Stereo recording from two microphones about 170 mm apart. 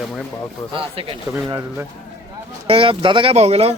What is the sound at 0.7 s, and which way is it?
Speech, 30° right (ahead or behind).